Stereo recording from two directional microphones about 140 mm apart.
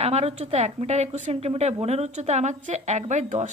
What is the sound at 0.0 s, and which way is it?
A woman's voice, 50° right (ahead or behind).